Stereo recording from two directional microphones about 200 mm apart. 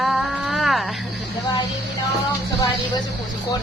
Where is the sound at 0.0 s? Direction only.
Centre (ahead or behind).